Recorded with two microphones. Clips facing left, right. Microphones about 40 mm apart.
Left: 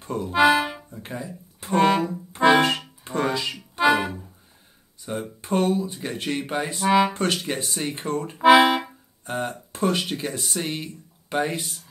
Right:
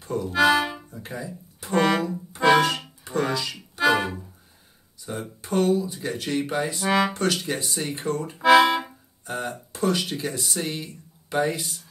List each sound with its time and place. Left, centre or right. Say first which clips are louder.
0.0 s speech: left 2 dB; left
1.8 s music: left 2 dB; left
5.4 s speech: right 1 dB; left
6.8 s speech: left 4 dB; centre
7.1 s speech: even; left